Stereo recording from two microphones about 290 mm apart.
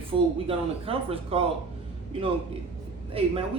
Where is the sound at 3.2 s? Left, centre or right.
Centre.